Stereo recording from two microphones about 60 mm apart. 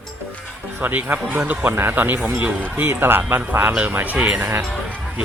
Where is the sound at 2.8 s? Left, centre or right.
Right.